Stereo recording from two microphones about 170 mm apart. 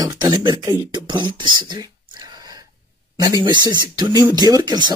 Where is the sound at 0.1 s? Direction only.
20° right (ahead or behind).